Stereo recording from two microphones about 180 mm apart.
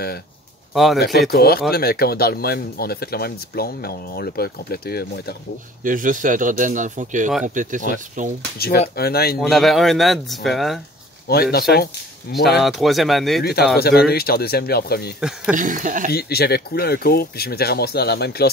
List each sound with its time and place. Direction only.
0.9 s speech: 60° left (ahead or behind)
5.9 s speech: 45° right (ahead or behind)
8.5 s speech: 60° left (ahead or behind)
9.4 s speech: centre (ahead or behind)
11.5 s speech: 60° left (ahead or behind)
12.4 s speech: centre (ahead or behind)
13.4 s speech: 60° left (ahead or behind)
15.1 s speech: 5° right (ahead or behind)
15.5 s speech: 45° right (ahead or behind)
16.1 s speech: 60° left (ahead or behind)